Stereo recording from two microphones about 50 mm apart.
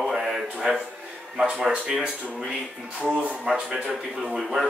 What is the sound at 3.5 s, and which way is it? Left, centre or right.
Speech, centre.